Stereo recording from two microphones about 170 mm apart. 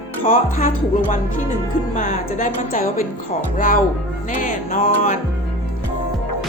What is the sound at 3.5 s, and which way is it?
A woman's voice, 55° left (ahead or behind).